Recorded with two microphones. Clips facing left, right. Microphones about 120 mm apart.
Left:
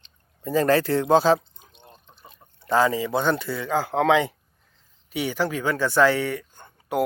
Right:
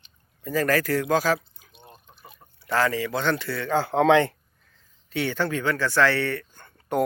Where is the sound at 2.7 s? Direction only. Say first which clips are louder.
Left 3 dB; 20° left (ahead or behind).